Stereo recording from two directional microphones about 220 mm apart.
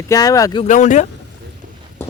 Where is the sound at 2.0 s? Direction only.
10° left (ahead or behind).